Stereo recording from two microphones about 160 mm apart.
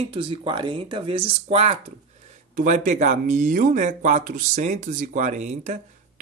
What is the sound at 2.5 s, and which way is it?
Speech, 50° right (ahead or behind).